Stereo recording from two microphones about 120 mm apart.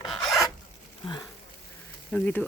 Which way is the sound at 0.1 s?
Centre (ahead or behind).